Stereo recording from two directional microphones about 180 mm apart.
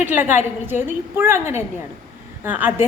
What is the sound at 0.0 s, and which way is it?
A woman's voice, 10° right (ahead or behind).